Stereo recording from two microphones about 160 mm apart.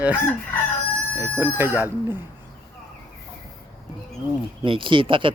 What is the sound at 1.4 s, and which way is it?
Speech, 10° right (ahead or behind).